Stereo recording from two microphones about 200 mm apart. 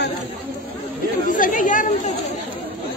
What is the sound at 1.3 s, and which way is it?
Speech, 40° left (ahead or behind).